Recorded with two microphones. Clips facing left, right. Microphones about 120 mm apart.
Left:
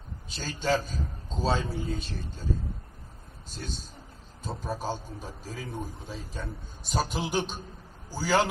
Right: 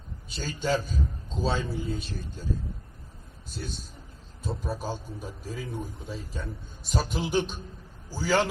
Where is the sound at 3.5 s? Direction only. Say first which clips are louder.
Right 2 dB; 5° right (ahead or behind).